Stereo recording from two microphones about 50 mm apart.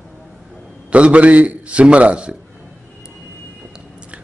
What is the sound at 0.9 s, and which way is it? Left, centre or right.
A man's voice, right.